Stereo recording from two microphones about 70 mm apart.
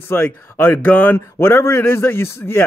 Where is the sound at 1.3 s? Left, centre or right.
Left.